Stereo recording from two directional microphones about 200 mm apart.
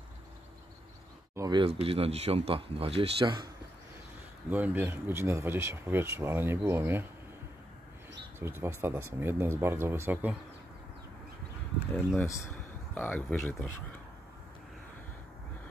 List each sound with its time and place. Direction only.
1.3 s speech: 20° right (ahead or behind)
4.5 s speech: 10° right (ahead or behind)
8.4 s speech: 10° right (ahead or behind)
11.9 s speech: 10° left (ahead or behind)